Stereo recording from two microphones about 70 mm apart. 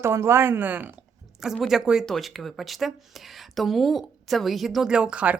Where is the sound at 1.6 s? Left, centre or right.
Centre.